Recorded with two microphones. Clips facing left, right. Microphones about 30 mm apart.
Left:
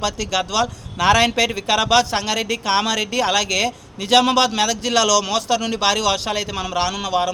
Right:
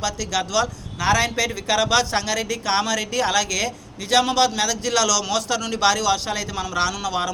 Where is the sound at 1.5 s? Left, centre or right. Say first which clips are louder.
Even; left.